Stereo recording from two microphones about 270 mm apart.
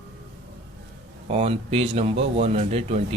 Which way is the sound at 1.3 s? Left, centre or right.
Right.